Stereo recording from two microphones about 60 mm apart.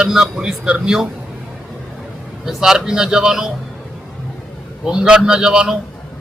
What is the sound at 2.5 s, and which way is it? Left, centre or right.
A man's voice, centre.